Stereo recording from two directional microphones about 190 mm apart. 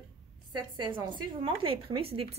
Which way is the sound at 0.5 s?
25° right (ahead or behind).